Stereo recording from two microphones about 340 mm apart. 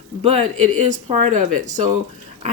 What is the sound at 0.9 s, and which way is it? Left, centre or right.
Speech, centre.